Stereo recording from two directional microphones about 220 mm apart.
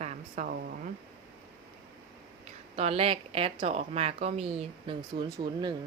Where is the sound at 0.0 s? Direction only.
30° right (ahead or behind).